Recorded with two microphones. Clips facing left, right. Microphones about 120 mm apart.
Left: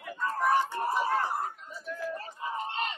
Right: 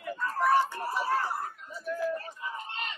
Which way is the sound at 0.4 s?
20° left (ahead or behind).